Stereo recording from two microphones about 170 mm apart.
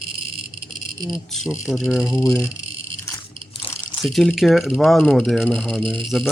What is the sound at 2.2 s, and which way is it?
Speech, 15° left (ahead or behind).